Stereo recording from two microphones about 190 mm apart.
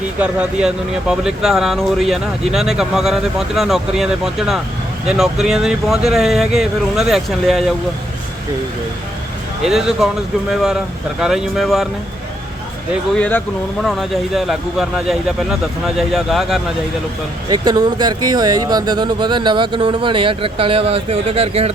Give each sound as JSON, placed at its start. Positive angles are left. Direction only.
{"t": 0.2, "sound": "speech", "side_deg": -5}
{"t": 9.6, "sound": "speech", "side_deg": 0}
{"t": 13.1, "sound": "speech", "side_deg": 5}
{"t": 17.5, "sound": "speech", "side_deg": -20}